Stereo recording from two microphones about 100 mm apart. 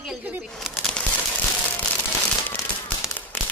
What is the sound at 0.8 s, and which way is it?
Crumpling, 10° left (ahead or behind).